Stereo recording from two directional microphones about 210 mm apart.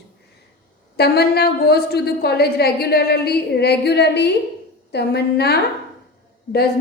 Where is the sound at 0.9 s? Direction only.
50° left (ahead or behind).